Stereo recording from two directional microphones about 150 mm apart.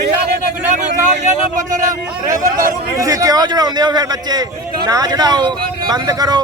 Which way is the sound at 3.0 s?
25° right (ahead or behind).